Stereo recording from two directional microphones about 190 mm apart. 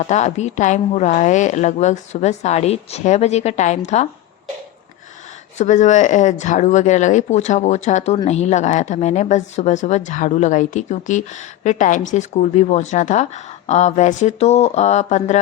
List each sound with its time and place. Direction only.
0.0 s speech: 35° left (ahead or behind)
5.5 s speech: 40° left (ahead or behind)